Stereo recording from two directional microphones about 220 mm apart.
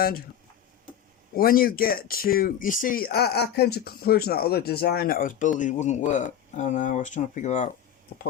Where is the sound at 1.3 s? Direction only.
40° left (ahead or behind).